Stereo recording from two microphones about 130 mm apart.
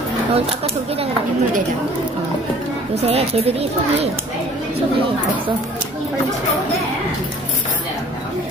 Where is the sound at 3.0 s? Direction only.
50° right (ahead or behind).